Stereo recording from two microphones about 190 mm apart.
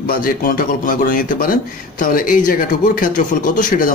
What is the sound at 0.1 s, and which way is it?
A man's voice, 50° left (ahead or behind).